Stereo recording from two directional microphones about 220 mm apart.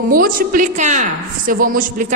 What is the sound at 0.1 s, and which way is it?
A woman's voice, 40° right (ahead or behind).